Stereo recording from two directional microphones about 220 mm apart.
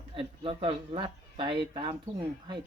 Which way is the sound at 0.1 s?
25° right (ahead or behind).